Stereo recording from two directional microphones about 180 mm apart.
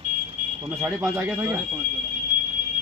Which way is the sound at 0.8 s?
5° right (ahead or behind).